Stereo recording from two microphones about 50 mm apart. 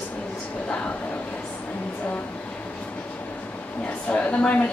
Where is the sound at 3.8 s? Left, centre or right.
Left.